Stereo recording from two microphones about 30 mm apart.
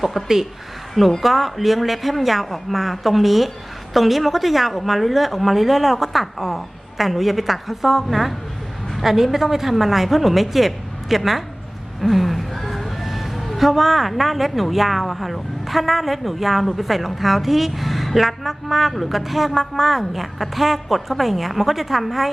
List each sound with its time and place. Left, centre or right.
0.1 s a woman's voice: centre
1.2 s a woman's voice: centre